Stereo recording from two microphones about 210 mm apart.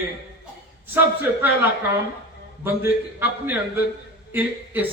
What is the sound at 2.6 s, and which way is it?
A man's voice, 10° right (ahead or behind).